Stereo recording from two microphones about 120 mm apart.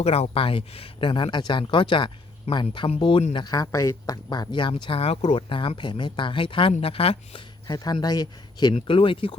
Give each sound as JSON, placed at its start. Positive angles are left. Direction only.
{"t": 0.0, "sound": "speech", "side_deg": 60}
{"t": 3.3, "sound": "speech", "side_deg": 30}
{"t": 7.7, "sound": "speech", "side_deg": 35}
{"t": 8.7, "sound": "speech", "side_deg": 50}